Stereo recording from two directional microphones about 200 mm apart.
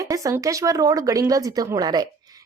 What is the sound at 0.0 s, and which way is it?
Speech, 15° right (ahead or behind).